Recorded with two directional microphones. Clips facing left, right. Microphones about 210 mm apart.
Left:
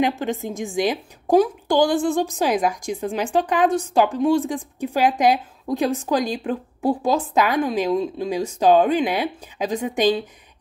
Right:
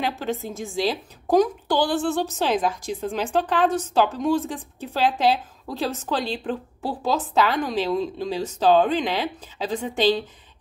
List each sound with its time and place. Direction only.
0.0 s a woman's voice: 15° left (ahead or behind)